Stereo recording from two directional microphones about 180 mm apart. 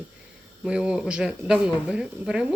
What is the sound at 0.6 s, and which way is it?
Speech, 5° right (ahead or behind).